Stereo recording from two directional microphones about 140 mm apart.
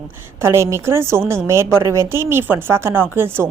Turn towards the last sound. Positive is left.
turn(degrees=-15)  # may be behind; listen again after turning